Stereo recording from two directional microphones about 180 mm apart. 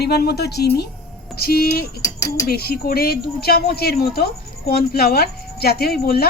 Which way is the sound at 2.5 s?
60° left (ahead or behind).